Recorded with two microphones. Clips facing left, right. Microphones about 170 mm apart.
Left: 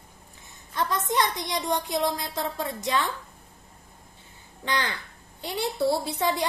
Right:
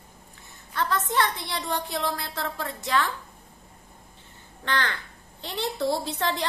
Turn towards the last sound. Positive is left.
turn(degrees=10)  # may be behind; listen again after turning